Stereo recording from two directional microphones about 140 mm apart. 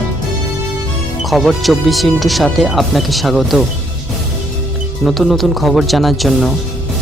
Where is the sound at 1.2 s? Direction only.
Centre (ahead or behind).